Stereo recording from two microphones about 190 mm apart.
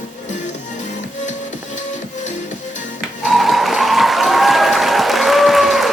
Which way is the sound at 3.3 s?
Centre (ahead or behind).